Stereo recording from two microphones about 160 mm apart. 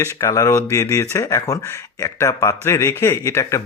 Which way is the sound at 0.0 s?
20° left (ahead or behind).